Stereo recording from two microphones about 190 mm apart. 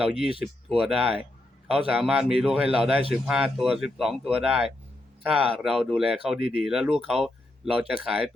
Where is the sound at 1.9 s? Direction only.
5° right (ahead or behind).